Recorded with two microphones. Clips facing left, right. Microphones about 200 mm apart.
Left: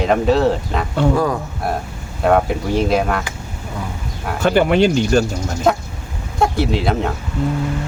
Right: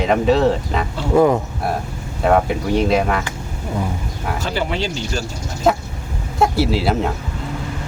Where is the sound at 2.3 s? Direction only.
Centre (ahead or behind).